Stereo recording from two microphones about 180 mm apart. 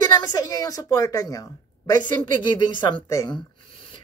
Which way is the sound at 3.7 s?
30° left (ahead or behind).